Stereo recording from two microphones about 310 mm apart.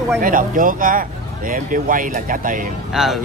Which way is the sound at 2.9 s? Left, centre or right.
Centre.